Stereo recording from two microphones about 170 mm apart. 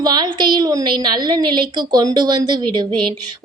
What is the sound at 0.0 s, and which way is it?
A woman's voice, 25° right (ahead or behind).